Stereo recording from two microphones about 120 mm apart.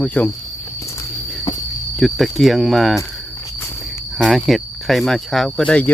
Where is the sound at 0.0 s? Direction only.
10° left (ahead or behind).